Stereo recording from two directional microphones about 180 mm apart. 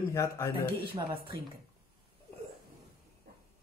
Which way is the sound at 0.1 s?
15° left (ahead or behind).